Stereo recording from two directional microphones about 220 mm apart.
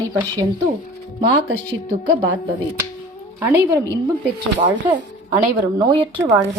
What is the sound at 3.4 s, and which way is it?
Speech, 10° right (ahead or behind).